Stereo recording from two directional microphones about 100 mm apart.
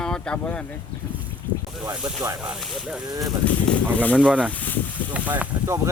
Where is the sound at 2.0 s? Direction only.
25° right (ahead or behind).